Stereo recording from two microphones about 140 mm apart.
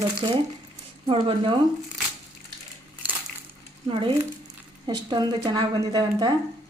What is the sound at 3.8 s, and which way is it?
A woman's voice, 40° right (ahead or behind).